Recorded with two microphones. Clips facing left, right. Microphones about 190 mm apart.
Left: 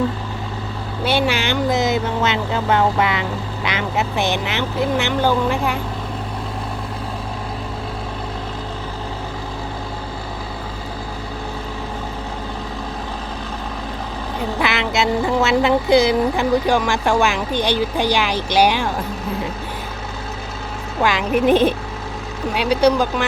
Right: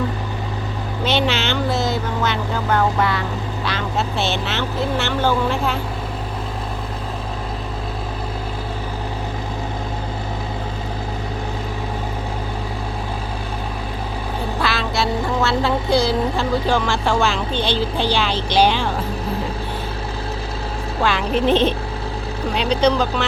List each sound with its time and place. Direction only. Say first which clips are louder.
1.0 s speech: left 1 dB; 10° left (ahead or behind)
14.6 s speech: left 2 dB; 20° left (ahead or behind)
21.0 s speech: left 2 dB; 10° left (ahead or behind)